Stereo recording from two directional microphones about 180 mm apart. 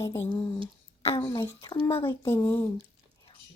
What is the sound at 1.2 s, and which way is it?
Speech, 15° left (ahead or behind).